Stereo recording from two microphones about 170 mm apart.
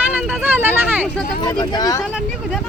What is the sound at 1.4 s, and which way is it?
Speech, 25° left (ahead or behind).